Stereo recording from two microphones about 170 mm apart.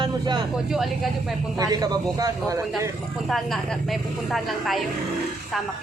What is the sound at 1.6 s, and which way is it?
A man's voice, 20° right (ahead or behind).